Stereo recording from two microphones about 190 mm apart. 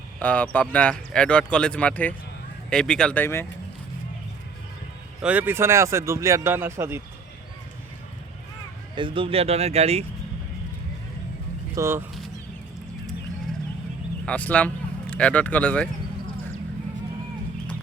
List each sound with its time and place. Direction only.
0.2 s speech: 10° left (ahead or behind)
5.2 s speech: 10° right (ahead or behind)
9.0 s speech: 25° right (ahead or behind)
11.7 s speech: 15° right (ahead or behind)
14.3 s speech: 5° left (ahead or behind)